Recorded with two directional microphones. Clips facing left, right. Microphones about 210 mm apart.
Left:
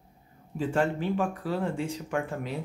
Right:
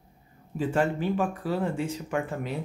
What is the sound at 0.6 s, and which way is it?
Speech, 5° right (ahead or behind).